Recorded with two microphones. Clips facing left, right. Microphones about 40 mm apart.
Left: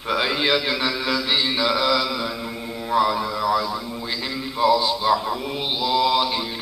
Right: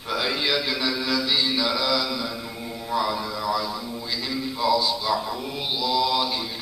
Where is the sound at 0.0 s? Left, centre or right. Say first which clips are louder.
Left 4 dB; left.